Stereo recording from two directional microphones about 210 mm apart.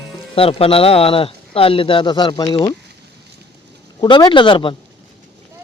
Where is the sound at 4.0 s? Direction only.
20° left (ahead or behind).